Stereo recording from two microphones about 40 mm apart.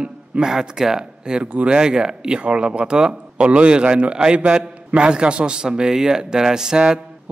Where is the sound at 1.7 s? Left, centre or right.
Right.